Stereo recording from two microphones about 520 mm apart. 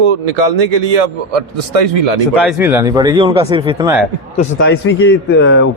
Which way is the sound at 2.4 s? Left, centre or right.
Centre.